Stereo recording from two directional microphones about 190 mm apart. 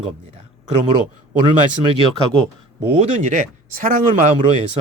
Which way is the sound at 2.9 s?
35° right (ahead or behind).